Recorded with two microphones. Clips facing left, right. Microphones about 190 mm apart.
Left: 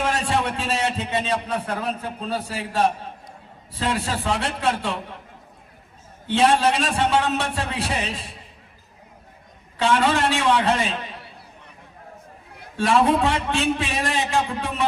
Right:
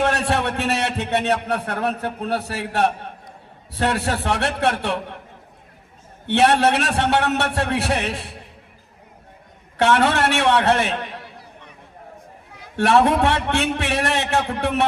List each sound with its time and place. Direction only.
0.0 s a man's voice: 70° right (ahead or behind)
6.2 s a man's voice: 70° right (ahead or behind)
9.7 s a man's voice: 70° right (ahead or behind)
12.7 s a man's voice: 70° right (ahead or behind)